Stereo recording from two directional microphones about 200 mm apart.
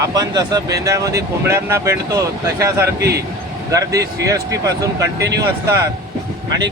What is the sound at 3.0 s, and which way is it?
Speech, 55° right (ahead or behind).